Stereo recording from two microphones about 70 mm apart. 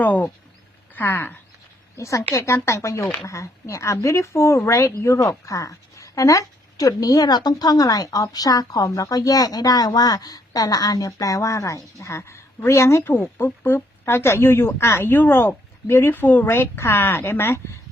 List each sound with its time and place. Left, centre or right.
0.0 s speech: left
2.0 s a woman's voice: left
13.1 s a woman's voice: left